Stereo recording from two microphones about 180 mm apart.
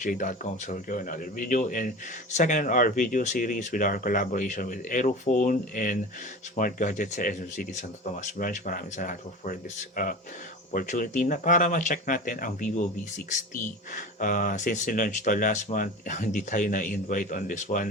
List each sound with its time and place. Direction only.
0.0 s speech: 45° left (ahead or behind)